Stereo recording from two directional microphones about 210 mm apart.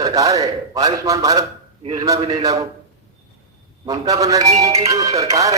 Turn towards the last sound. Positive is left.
turn(degrees=-15)  # may be behind; listen again after turning